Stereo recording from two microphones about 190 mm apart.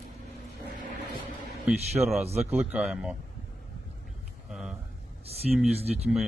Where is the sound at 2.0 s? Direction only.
Centre (ahead or behind).